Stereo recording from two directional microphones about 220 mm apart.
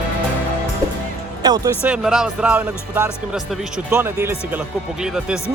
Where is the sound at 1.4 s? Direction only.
15° right (ahead or behind).